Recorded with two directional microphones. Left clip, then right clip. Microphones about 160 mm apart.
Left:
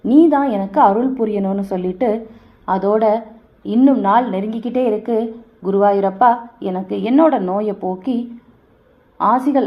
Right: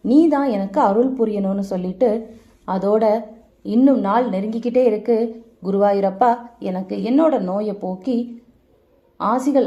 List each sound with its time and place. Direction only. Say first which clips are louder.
0.0 s a woman's voice: left 3 dB; 25° right (ahead or behind)